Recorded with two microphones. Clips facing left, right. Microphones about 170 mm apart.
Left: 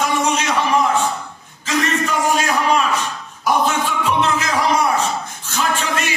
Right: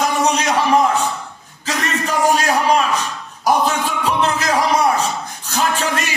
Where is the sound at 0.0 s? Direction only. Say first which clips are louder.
Right 2 dB; 35° right (ahead or behind).